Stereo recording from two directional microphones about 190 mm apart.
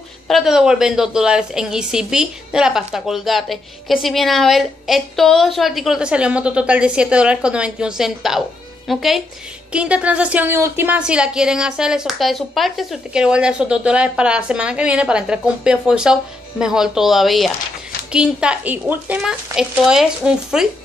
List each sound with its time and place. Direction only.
0.3 s a woman's voice: centre (ahead or behind)